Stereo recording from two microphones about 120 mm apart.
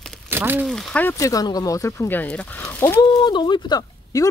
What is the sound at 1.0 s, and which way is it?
Speech, 25° left (ahead or behind).